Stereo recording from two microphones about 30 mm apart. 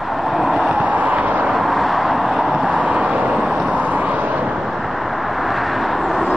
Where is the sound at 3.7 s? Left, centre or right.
Right.